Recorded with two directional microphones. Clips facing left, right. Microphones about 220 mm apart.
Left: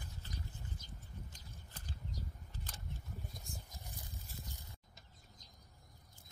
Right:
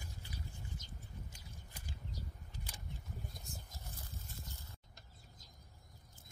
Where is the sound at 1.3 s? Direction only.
10° right (ahead or behind).